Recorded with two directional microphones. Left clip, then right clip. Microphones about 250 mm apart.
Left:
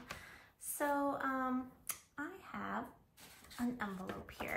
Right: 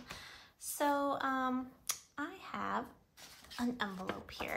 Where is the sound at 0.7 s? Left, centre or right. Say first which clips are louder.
Right 3 dB; centre.